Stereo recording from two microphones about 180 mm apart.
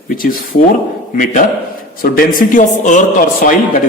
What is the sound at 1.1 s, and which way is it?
A man's voice, 45° left (ahead or behind).